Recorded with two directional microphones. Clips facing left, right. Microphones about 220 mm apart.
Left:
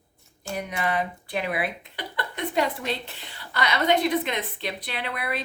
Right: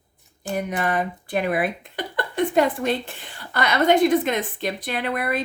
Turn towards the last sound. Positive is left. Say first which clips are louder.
# right 6 dB
turn(degrees=-45)  # may be behind; listen again after turning